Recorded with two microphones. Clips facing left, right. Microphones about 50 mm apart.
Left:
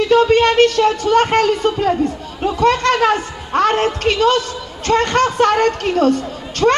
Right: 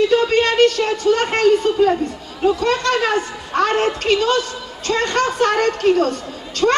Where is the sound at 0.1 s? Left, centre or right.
Left.